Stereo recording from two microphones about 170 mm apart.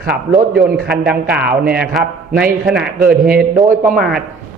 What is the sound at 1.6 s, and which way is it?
Speech, 65° right (ahead or behind).